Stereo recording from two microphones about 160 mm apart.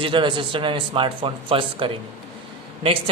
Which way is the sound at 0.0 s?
30° right (ahead or behind).